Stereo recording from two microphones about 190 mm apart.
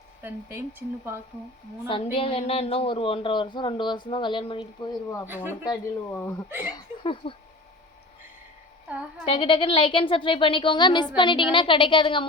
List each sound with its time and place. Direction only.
0.2 s speech: 10° right (ahead or behind)
1.9 s speech: 30° left (ahead or behind)
6.7 s speech: 25° left (ahead or behind)
9.3 s speech: 25° left (ahead or behind)